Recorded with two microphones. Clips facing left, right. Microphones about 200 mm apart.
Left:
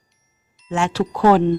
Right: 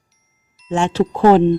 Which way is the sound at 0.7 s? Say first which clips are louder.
Right 4 dB; 25° right (ahead or behind).